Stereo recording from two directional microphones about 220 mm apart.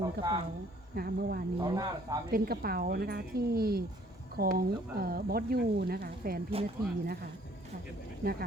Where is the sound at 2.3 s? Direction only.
45° right (ahead or behind).